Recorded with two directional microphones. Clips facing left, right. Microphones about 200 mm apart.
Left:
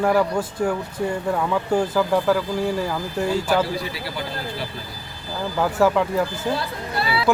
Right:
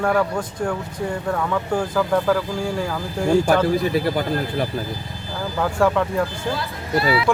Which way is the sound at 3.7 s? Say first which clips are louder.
Right 9 dB; 50° right (ahead or behind).